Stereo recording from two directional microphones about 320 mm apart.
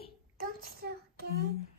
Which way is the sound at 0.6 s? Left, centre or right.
Right.